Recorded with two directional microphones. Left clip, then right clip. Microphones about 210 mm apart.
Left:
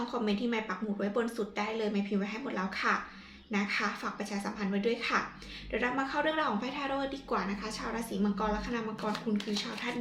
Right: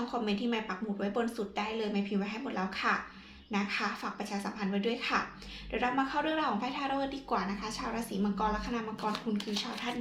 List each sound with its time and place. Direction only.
0.1 s speech: 20° right (ahead or behind)